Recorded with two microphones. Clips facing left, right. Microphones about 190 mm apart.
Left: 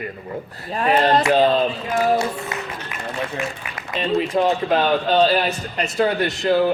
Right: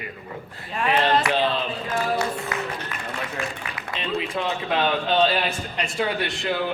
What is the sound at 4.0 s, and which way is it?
Speech, 40° left (ahead or behind).